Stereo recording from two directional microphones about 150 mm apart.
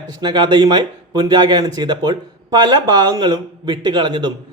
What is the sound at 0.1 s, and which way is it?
Speech, 30° right (ahead or behind).